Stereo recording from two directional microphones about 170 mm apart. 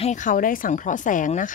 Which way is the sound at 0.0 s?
45° left (ahead or behind).